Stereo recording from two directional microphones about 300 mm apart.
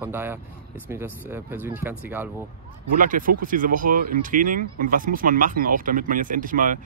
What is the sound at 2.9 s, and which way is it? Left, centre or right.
Speech, right.